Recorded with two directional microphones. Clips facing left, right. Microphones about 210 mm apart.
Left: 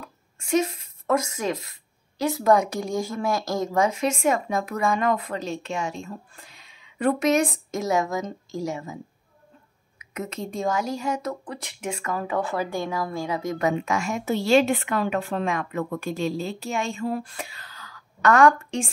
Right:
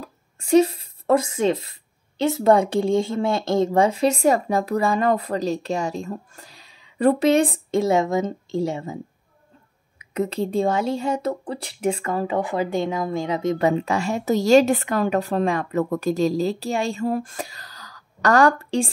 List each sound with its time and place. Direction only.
0.0 s a woman's voice: 35° right (ahead or behind)